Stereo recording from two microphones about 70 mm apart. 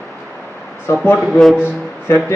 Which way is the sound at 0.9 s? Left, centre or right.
Left.